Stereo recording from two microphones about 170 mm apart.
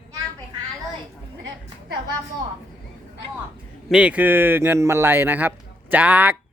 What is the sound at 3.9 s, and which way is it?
A man's voice, 5° right (ahead or behind).